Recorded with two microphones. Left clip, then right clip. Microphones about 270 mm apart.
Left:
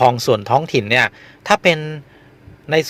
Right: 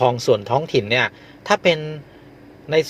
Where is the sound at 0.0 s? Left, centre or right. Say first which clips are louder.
Left 3 dB; left.